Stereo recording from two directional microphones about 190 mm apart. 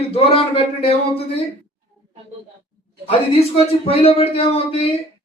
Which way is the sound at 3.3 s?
30° left (ahead or behind).